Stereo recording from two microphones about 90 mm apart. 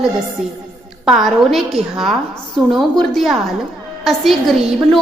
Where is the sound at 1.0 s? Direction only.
Centre (ahead or behind).